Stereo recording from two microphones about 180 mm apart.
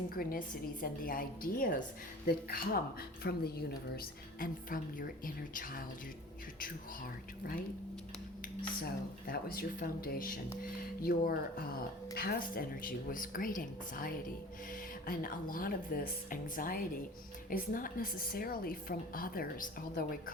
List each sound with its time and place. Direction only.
0.1 s a woman's voice: 55° left (ahead or behind)
8.8 s a woman's voice: 55° left (ahead or behind)